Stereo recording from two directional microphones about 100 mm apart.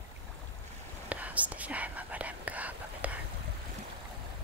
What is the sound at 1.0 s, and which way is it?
Whispering, 15° right (ahead or behind).